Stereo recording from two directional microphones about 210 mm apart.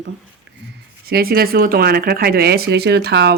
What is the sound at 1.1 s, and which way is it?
Speech, 45° right (ahead or behind).